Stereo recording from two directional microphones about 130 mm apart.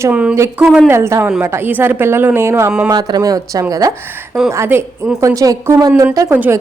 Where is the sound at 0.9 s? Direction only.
20° right (ahead or behind).